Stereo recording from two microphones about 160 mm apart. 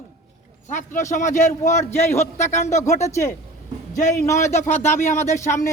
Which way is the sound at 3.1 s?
15° left (ahead or behind).